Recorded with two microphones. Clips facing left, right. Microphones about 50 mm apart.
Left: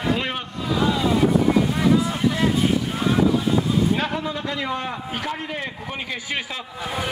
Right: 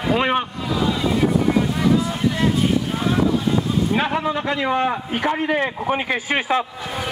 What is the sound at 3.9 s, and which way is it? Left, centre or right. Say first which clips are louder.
A man's voice: right 4 dB; right.